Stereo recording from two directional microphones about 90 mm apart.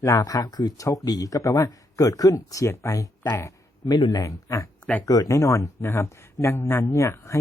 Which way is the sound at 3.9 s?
55° left (ahead or behind).